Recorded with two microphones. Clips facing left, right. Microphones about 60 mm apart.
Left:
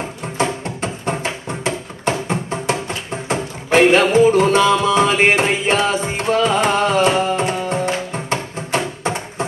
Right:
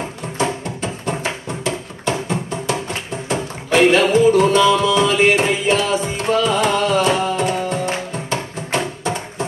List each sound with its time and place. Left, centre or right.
0.4 s music: left